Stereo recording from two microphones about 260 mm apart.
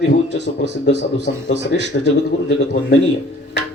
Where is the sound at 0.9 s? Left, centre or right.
Left.